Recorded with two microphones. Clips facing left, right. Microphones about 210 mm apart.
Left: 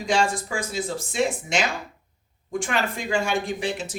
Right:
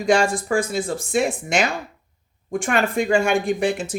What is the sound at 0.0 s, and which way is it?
Speech, 50° right (ahead or behind).